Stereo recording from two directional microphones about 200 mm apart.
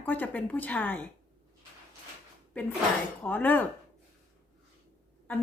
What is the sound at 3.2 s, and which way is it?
Speech, 10° left (ahead or behind).